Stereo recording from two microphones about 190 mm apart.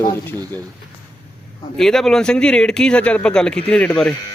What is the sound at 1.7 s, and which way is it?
Speech, centre (ahead or behind).